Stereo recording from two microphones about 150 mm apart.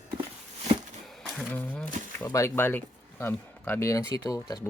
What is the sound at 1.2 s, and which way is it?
Speech, 5° left (ahead or behind).